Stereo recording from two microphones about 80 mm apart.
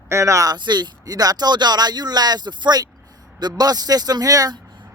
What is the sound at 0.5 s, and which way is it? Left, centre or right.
Speech, right.